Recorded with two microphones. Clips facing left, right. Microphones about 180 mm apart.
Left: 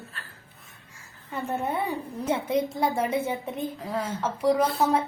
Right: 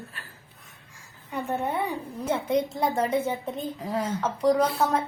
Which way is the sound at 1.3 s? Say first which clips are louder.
Right 1 dB; centre (ahead or behind).